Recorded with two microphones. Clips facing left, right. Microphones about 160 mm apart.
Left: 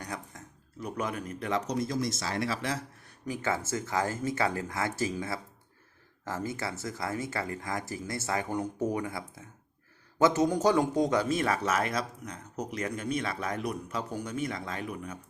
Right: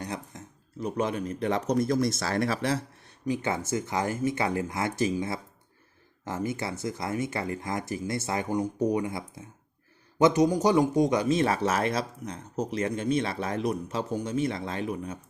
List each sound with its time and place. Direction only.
0.0 s speech: 25° right (ahead or behind)
1.6 s speech: 50° right (ahead or behind)
2.6 s speech: 35° right (ahead or behind)
3.2 s speech: 20° right (ahead or behind)
6.2 s speech: 20° right (ahead or behind)